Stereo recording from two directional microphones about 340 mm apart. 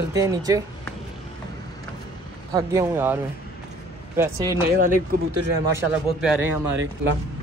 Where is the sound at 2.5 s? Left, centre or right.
Centre.